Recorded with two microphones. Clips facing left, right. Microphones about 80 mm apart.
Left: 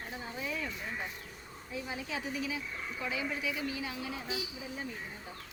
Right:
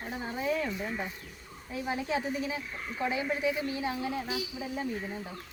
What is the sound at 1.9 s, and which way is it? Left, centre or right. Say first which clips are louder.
A woman's voice: right 8 dB; right.